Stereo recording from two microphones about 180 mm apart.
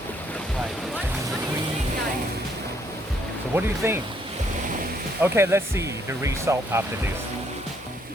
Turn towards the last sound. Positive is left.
turn(degrees=-15)  # may be behind; listen again after turning